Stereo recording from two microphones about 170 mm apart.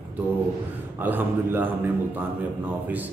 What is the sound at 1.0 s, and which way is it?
Speech, 10° right (ahead or behind).